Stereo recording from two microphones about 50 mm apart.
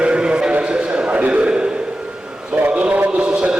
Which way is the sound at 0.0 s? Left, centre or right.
Centre.